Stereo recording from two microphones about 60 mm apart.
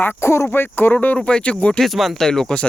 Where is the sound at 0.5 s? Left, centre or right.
Left.